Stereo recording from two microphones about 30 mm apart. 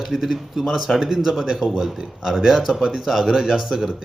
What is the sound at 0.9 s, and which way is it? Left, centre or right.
Speech, right.